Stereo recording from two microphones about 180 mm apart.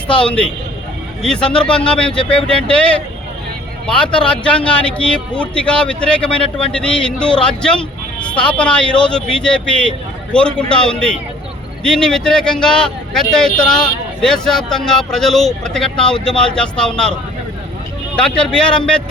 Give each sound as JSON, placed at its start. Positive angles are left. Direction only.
{"t": 0.3, "sound": "speech", "side_deg": 5}
{"t": 18.2, "sound": "speech", "side_deg": 5}